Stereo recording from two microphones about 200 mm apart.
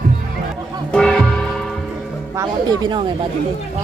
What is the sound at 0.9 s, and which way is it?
Music, 5° left (ahead or behind).